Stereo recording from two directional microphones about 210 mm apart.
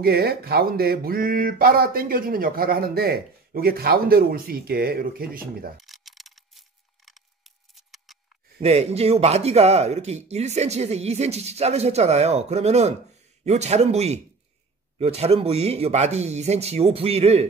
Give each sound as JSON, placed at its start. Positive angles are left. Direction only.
{"t": 0.0, "sound": "a sound", "side_deg": -45}
{"t": 6.0, "sound": "mechanisms", "side_deg": 0}
{"t": 7.1, "sound": "scissors", "side_deg": 0}
{"t": 8.5, "sound": "speech", "side_deg": -30}